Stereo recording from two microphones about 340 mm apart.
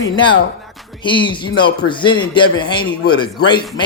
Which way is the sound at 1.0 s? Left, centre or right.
Centre.